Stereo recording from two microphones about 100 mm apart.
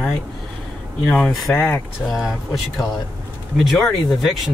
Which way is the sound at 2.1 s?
Centre (ahead or behind).